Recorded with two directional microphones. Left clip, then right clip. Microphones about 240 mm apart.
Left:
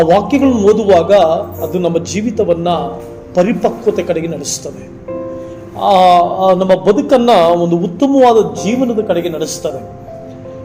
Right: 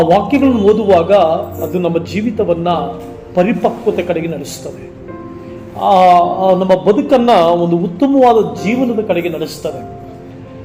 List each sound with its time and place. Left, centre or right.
0.1 s a man's voice: left
5.8 s a man's voice: left